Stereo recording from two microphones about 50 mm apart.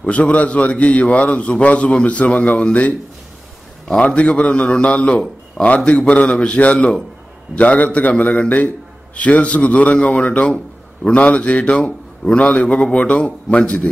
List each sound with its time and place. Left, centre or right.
0.0 s a man's voice: left